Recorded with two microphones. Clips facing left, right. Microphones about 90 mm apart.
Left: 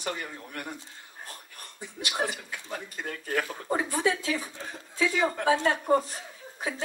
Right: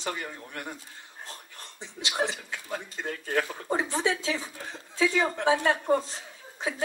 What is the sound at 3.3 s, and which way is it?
Speech, 25° right (ahead or behind).